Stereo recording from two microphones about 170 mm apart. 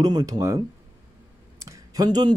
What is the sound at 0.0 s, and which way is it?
Speech, 25° right (ahead or behind).